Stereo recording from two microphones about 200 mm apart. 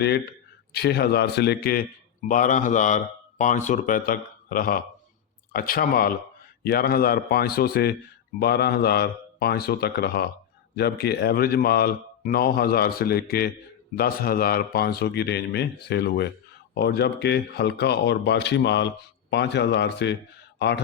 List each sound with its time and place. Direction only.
0.7 s speech: 55° left (ahead or behind)
2.2 s a man's voice: 40° left (ahead or behind); by 20.8 s 60° left (ahead or behind)